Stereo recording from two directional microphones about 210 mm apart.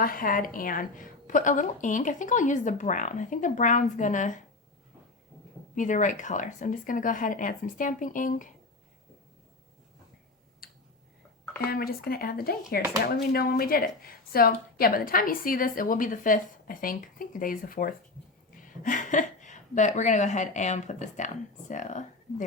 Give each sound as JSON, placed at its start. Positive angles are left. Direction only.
{"t": 0.0, "sound": "a woman's voice", "side_deg": 40}
{"t": 5.7, "sound": "a woman's voice", "side_deg": 35}
{"t": 10.6, "sound": "tick-tock", "side_deg": 45}
{"t": 11.7, "sound": "a woman's voice", "side_deg": 45}